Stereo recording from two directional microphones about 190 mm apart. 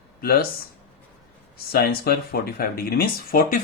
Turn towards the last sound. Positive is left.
turn(degrees=50)  # may be behind; listen again after turning